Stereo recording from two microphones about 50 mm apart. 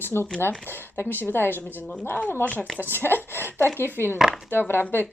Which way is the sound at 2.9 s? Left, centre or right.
Left.